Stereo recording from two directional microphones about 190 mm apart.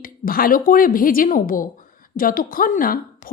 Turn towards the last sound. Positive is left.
turn(degrees=45)  # may be behind; listen again after turning